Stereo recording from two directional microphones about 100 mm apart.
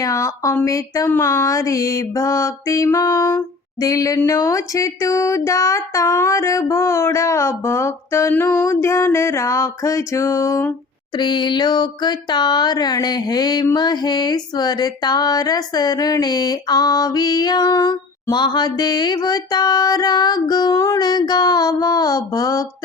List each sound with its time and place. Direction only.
0.0 s music: 30° left (ahead or behind)
5.5 s child singing: 30° left (ahead or behind)
11.2 s a sound: 50° left (ahead or behind)
21.0 s music: 45° left (ahead or behind)